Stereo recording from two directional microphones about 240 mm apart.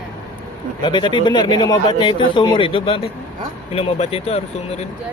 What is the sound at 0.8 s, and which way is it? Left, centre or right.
Speech, centre.